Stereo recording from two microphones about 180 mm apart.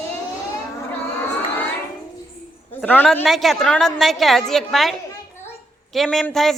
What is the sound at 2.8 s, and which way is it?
A woman's voice, 10° left (ahead or behind).